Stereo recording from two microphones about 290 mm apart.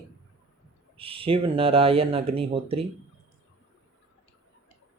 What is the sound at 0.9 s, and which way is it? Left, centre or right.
Speech, centre.